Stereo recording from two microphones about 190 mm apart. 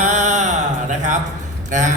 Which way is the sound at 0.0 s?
40° right (ahead or behind).